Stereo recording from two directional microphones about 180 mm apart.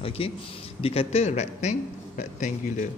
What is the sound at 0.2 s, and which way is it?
A man's voice, 30° left (ahead or behind).